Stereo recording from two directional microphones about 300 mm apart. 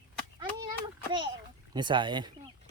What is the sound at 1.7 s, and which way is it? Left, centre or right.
Speech, centre.